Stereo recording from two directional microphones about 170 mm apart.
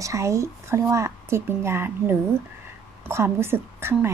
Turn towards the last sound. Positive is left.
turn(degrees=-15)  # may be behind; listen again after turning